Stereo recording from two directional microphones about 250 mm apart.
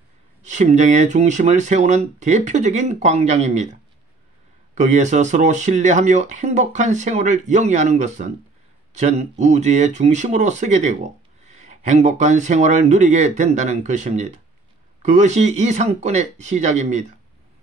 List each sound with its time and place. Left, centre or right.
0.4 s speech: right
4.7 s speech: right